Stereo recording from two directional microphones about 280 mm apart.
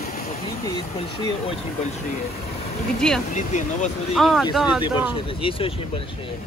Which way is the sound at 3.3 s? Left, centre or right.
Left.